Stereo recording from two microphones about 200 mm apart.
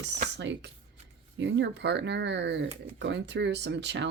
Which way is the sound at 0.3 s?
60° right (ahead or behind).